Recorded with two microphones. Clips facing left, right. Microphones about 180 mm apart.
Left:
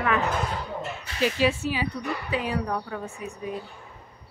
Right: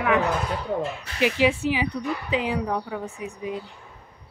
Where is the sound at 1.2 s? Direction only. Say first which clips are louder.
Right 2 dB; 15° right (ahead or behind).